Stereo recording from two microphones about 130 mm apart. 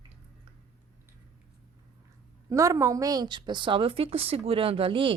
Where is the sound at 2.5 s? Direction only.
25° right (ahead or behind); by 5.1 s 45° right (ahead or behind).